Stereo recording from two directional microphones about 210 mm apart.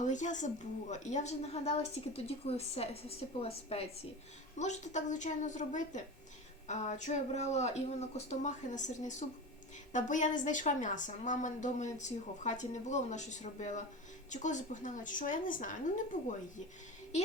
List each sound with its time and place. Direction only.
0.0 s a woman's voice: 35° left (ahead or behind)